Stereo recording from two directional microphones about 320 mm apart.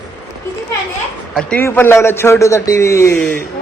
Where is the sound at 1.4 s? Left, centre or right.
Centre.